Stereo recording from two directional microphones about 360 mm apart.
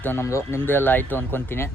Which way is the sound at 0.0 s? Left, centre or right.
Centre.